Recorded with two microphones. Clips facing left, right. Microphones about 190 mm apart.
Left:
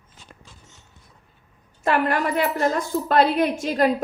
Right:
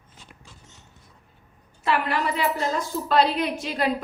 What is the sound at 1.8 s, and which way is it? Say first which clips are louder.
A woman's voice: left 3 dB; 50° left (ahead or behind).